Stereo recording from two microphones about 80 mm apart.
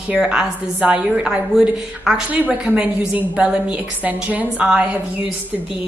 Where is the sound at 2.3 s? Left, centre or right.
Centre.